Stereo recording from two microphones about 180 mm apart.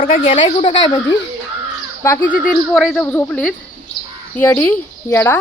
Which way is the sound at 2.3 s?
Centre (ahead or behind).